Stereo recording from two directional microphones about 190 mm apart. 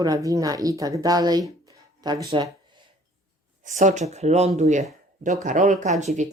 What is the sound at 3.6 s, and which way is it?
Speech, 40° right (ahead or behind).